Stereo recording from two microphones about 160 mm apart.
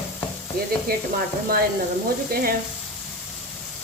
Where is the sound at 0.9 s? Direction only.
75° right (ahead or behind).